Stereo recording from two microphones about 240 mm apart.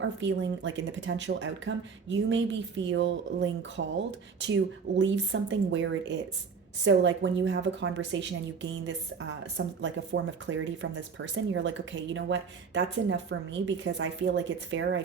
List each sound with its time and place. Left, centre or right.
0.0 s speech: right
9.6 s speech: right